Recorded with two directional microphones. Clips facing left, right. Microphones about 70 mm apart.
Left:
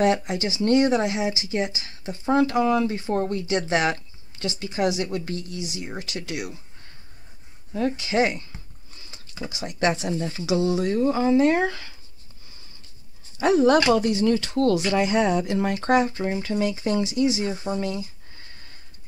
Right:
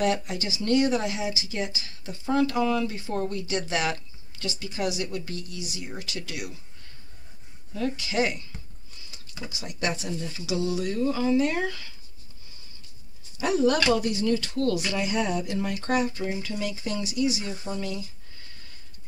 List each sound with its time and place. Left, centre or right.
0.0 s speech: left
7.7 s speech: left
13.4 s speech: left